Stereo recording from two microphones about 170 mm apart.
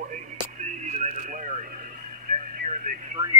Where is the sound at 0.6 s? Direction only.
45° right (ahead or behind).